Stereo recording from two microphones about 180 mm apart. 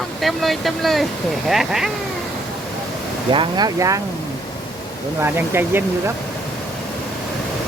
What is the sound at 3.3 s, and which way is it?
Speech, 25° right (ahead or behind).